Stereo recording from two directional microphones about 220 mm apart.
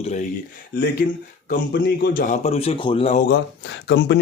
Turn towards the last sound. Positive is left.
turn(degrees=50)  # may be behind; listen again after turning